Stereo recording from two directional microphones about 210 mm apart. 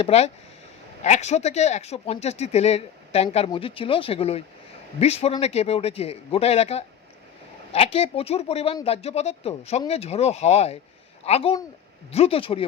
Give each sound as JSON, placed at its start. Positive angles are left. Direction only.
{"t": 0.0, "sound": "speech", "side_deg": 30}